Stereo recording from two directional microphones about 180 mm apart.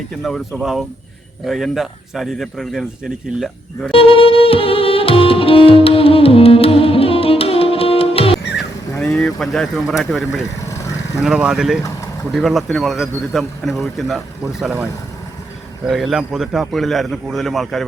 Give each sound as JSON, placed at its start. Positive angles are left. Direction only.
{"t": 0.2, "sound": "speech", "side_deg": 0}
{"t": 3.9, "sound": "music", "side_deg": 30}
{"t": 8.5, "sound": "a sound", "side_deg": 5}
{"t": 11.2, "sound": "speech", "side_deg": -5}
{"t": 15.9, "sound": "speech", "side_deg": 0}